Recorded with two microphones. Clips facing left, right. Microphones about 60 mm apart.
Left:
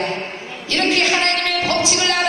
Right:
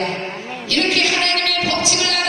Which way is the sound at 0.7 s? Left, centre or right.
Left.